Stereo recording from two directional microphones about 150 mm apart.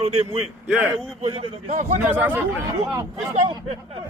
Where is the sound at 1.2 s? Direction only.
40° right (ahead or behind).